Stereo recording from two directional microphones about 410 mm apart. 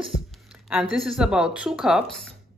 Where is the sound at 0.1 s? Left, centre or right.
Centre.